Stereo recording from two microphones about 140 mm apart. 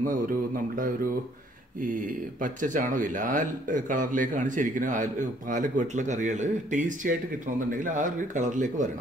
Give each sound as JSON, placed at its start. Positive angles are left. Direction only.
{"t": 0.0, "sound": "speech", "side_deg": -70}